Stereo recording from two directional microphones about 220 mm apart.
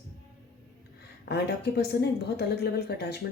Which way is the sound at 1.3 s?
50° left (ahead or behind).